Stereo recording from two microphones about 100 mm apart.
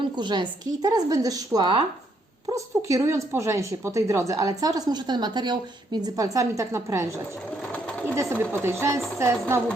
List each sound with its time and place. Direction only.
0.0 s speech: 50° right (ahead or behind)
2.5 s a woman's voice: 35° right (ahead or behind)
7.6 s bird: 10° left (ahead or behind)
8.1 s chopping: 25° right (ahead or behind)